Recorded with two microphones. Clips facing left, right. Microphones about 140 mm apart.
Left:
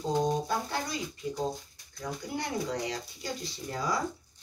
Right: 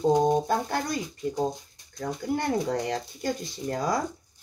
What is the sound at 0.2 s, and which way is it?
Speech, 50° right (ahead or behind).